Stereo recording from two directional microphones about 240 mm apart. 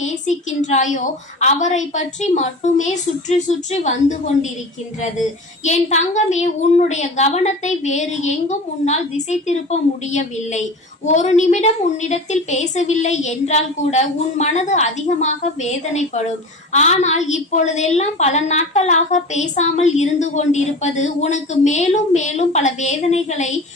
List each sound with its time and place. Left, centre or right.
0.0 s a woman's voice: left
5.6 s a woman's voice: left